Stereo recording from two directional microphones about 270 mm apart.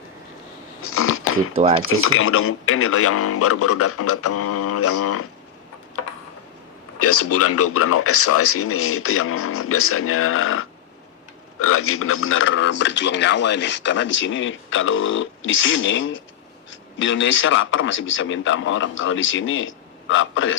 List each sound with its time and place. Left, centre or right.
0.9 s a sound: left
1.8 s speech: left
7.0 s speech: left